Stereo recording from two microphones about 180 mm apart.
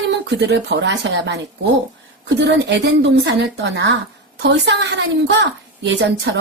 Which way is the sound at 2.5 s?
70° right (ahead or behind).